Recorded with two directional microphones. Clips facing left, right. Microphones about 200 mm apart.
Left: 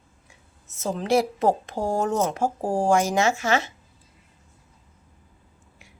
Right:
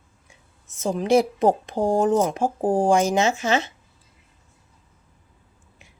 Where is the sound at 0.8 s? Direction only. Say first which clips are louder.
Right 3 dB; 15° right (ahead or behind).